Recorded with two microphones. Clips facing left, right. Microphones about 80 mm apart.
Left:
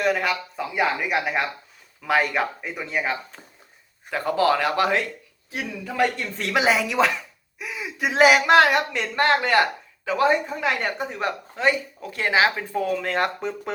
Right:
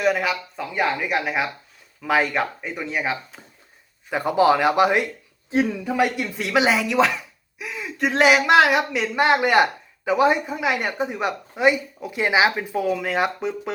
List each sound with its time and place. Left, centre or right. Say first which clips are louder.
0.0 s speech: right 1 dB; centre
4.1 s speech: right 3 dB; centre